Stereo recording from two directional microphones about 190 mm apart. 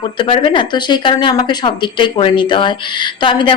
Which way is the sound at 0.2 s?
25° left (ahead or behind).